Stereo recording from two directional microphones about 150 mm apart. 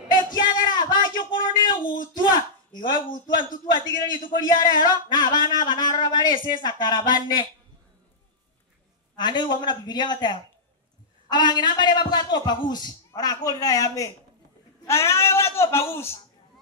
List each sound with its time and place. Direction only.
0.1 s a sound: 30° left (ahead or behind)
1.9 s speech: 65° left (ahead or behind)
2.2 s a man's voice: 30° left (ahead or behind)
9.1 s a man's voice: 30° left (ahead or behind)